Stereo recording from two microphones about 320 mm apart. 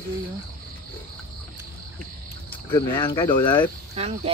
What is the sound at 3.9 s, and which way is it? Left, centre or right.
Cricket, centre.